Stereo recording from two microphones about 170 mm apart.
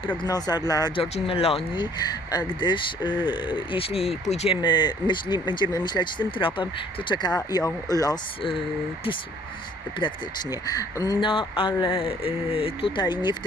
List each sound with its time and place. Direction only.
0.2 s speech: 25° left (ahead or behind)
1.0 s speech: 35° left (ahead or behind)
10.0 s speech: 30° left (ahead or behind)